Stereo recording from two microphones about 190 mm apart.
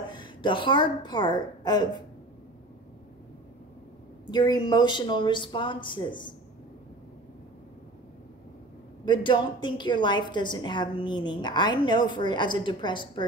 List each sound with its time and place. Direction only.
0.1 s a woman's voice: 25° left (ahead or behind)
4.3 s a woman's voice: 20° left (ahead or behind)
9.0 s a woman's voice: 25° left (ahead or behind)